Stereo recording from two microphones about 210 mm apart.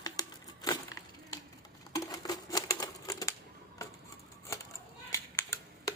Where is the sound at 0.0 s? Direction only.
20° left (ahead or behind).